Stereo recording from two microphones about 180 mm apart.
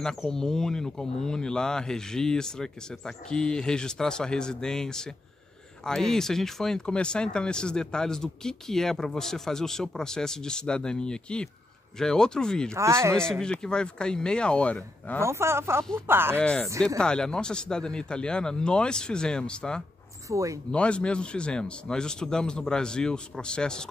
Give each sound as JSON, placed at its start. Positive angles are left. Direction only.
{"t": 0.0, "sound": "speech", "side_deg": 5}
{"t": 12.7, "sound": "speech", "side_deg": -15}
{"t": 13.3, "sound": "speech", "side_deg": 5}
{"t": 15.1, "sound": "speech", "side_deg": -15}
{"t": 16.3, "sound": "speech", "side_deg": 5}
{"t": 20.2, "sound": "speech", "side_deg": -15}
{"t": 20.7, "sound": "speech", "side_deg": 5}